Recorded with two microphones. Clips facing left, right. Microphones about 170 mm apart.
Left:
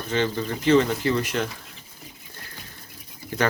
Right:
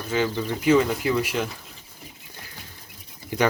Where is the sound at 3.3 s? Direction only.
15° right (ahead or behind).